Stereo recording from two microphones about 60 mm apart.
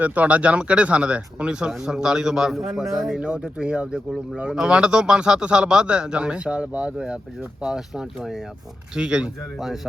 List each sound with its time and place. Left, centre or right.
0.0 s speech: right; by 3.2 s centre
3.2 s speech: right
7.6 s speech: centre